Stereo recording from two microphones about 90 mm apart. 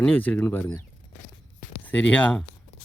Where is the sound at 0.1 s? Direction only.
20° left (ahead or behind).